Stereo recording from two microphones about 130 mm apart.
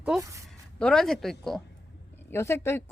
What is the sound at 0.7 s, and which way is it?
Speech, 5° left (ahead or behind).